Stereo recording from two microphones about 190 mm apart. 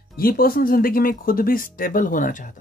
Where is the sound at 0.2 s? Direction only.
50° left (ahead or behind).